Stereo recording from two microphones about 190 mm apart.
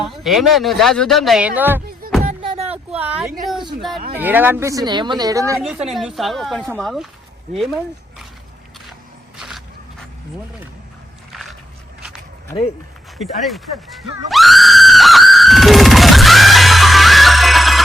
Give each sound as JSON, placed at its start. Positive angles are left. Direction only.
{"t": 0.0, "sound": "speech", "side_deg": 0}
{"t": 2.0, "sound": "music", "side_deg": -50}
{"t": 2.6, "sound": "a sound", "side_deg": -10}
{"t": 4.2, "sound": "speech", "side_deg": -10}
{"t": 5.5, "sound": "speech", "side_deg": -5}
{"t": 9.4, "sound": "biting", "side_deg": 0}
{"t": 11.3, "sound": "a sound", "side_deg": 0}
{"t": 13.4, "sound": "screaming", "side_deg": 0}